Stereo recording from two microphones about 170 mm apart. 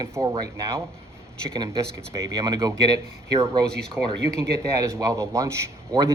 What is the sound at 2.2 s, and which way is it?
Speech, 25° right (ahead or behind).